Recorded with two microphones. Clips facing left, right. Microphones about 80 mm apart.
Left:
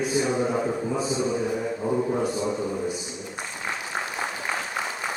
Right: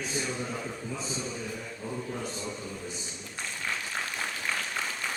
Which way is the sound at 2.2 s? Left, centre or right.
Centre.